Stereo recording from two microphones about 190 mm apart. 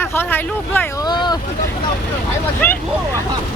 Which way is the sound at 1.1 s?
20° left (ahead or behind).